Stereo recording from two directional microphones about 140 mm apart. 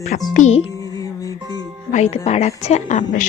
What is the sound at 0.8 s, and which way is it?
Music, 25° left (ahead or behind).